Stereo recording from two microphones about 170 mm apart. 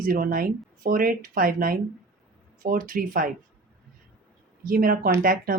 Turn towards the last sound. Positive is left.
turn(degrees=-55)  # may be behind; listen again after turning